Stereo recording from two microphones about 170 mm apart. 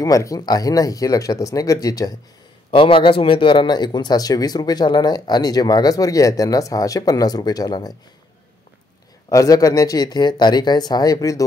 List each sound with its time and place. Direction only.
0.0 s speech: 20° left (ahead or behind)
2.7 s speech: 30° left (ahead or behind)
9.3 s speech: 20° left (ahead or behind)